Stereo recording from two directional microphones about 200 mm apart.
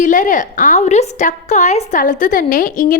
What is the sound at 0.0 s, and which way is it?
A woman's voice, 40° left (ahead or behind).